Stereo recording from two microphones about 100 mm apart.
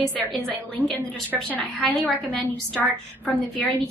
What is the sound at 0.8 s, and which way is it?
Speech, 15° left (ahead or behind).